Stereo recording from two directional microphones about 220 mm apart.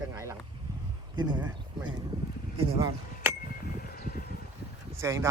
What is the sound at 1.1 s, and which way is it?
Speech, 20° right (ahead or behind).